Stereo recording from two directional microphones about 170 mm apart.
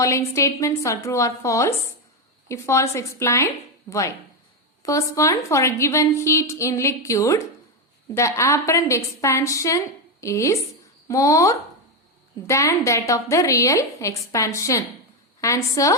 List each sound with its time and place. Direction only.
0.0 s a woman's voice: 20° left (ahead or behind)